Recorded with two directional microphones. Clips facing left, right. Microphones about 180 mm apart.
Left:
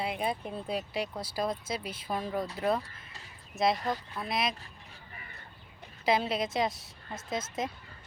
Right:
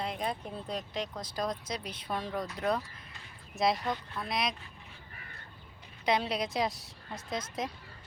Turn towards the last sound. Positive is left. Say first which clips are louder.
# left 2 dB
turn(degrees=5)  # may be behind; listen again after turning